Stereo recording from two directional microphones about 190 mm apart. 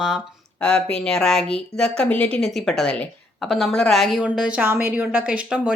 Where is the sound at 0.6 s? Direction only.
5° left (ahead or behind).